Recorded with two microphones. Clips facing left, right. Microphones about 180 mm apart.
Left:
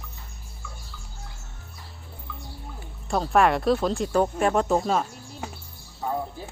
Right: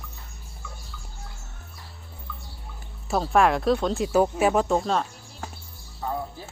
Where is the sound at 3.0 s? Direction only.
Centre (ahead or behind).